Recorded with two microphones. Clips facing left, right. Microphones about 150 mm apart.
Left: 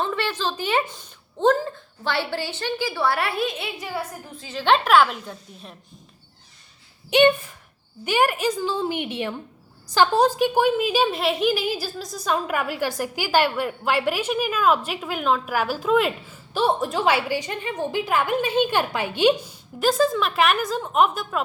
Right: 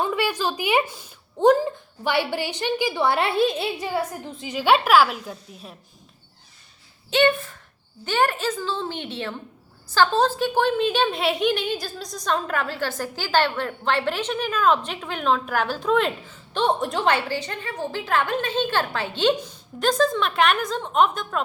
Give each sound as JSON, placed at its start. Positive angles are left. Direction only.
{"t": 0.0, "sound": "a sound", "side_deg": -10}
{"t": 1.4, "sound": "a woman's voice", "side_deg": -15}
{"t": 4.4, "sound": "a woman's voice", "side_deg": -15}
{"t": 7.1, "sound": "a woman's voice", "side_deg": 15}